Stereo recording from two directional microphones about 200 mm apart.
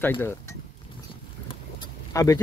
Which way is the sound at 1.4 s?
20° left (ahead or behind).